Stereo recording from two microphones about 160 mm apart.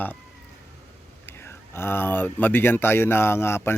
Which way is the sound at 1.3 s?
15° left (ahead or behind).